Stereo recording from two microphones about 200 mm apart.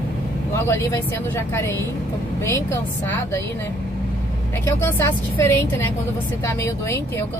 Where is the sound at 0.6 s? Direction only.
15° left (ahead or behind).